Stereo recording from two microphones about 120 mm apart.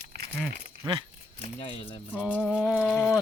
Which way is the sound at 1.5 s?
50° left (ahead or behind).